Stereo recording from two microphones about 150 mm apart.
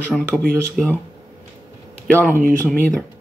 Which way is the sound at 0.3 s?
5° left (ahead or behind).